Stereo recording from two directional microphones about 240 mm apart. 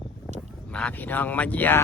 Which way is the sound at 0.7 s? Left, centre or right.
Centre.